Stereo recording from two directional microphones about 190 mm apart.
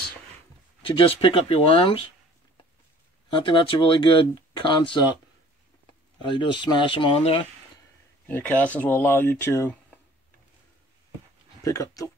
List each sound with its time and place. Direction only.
0.8 s speech: 30° left (ahead or behind)
3.3 s speech: 25° left (ahead or behind)
6.2 s speech: 25° left (ahead or behind)
8.3 s speech: 10° left (ahead or behind)
11.6 s speech: 15° left (ahead or behind)